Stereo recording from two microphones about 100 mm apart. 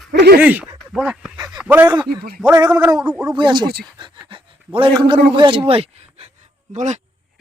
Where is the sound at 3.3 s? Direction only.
50° right (ahead or behind); by 6.3 s 90° right.